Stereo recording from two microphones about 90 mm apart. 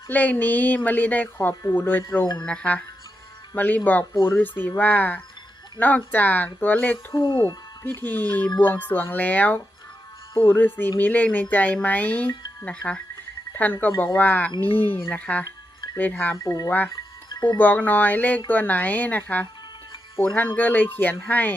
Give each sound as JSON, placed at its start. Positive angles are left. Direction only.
{"t": 0.1, "sound": "speech", "side_deg": 20}
{"t": 2.4, "sound": "speech", "side_deg": 10}
{"t": 16.4, "sound": "speech", "side_deg": 35}
{"t": 16.6, "sound": "speech", "side_deg": 20}
{"t": 17.2, "sound": "music", "side_deg": 50}
{"t": 17.6, "sound": "speech", "side_deg": 20}